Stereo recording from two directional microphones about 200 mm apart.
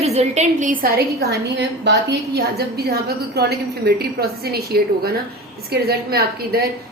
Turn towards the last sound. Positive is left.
turn(degrees=-50)  # may be behind; listen again after turning